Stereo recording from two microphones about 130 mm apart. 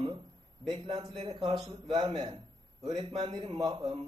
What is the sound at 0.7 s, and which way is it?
A man's voice, 40° right (ahead or behind).